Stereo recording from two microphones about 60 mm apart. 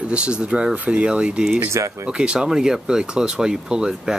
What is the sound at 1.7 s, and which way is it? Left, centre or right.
Speech, right.